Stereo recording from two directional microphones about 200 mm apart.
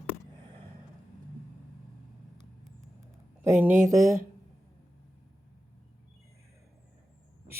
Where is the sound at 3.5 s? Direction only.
10° right (ahead or behind).